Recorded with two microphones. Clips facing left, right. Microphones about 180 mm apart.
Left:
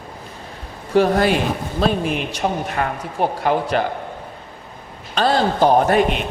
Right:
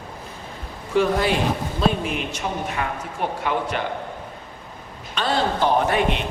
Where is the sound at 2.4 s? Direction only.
55° left (ahead or behind).